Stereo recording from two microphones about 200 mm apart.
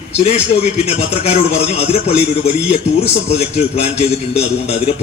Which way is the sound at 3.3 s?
30° left (ahead or behind).